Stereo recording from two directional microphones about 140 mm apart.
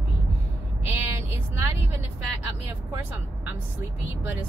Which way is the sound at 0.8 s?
15° right (ahead or behind).